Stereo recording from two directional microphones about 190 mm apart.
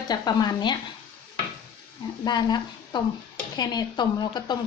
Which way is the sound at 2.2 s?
20° left (ahead or behind).